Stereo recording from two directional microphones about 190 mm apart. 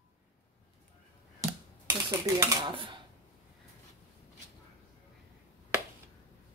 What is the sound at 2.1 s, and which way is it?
Speech, 15° right (ahead or behind).